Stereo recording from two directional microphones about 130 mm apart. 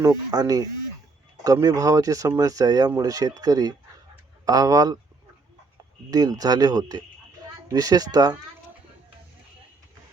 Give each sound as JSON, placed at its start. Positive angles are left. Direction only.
{"t": 0.0, "sound": "speech", "side_deg": -30}
{"t": 6.1, "sound": "speech", "side_deg": -30}